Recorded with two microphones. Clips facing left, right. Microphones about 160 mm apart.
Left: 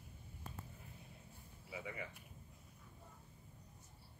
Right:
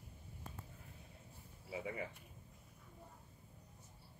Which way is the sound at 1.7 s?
35° right (ahead or behind).